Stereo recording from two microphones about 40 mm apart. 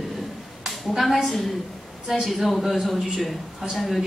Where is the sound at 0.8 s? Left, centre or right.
Centre.